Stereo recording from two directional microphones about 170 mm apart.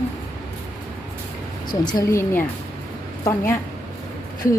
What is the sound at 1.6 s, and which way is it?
Speech, 25° left (ahead or behind).